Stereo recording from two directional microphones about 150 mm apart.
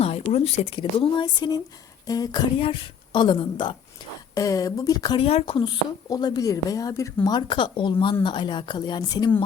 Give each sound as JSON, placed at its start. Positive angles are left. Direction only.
{"t": 0.0, "sound": "speech", "side_deg": 40}
{"t": 2.6, "sound": "speech", "side_deg": 35}
{"t": 5.2, "sound": "speech", "side_deg": 40}